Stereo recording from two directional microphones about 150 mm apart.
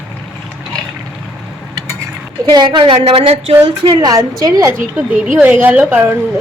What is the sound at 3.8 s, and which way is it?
A woman's voice, 30° right (ahead or behind).